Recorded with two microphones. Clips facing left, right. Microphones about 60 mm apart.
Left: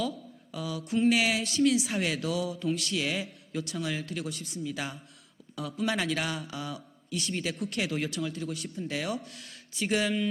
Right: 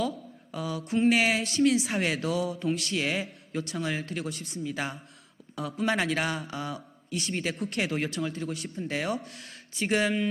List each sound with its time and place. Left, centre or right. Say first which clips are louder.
0.0 s a sound: right 2 dB; right
0.9 s speech: right 1 dB; right
1.1 s speech: right 2 dB; right
2.5 s mantra: right 1 dB; right
2.9 s speech: right 2 dB; right
4.3 s speech: right 1 dB; right
4.5 s speech: right 3 dB; right
7.2 s speech: right 1 dB; right
7.4 s speech: right 2 dB; right
9.1 s speech: right 2 dB; right
9.4 s speech: right 1 dB; right